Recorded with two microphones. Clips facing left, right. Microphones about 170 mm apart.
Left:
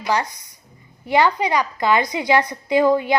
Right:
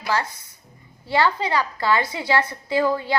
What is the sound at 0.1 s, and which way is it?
A woman's voice, 15° left (ahead or behind).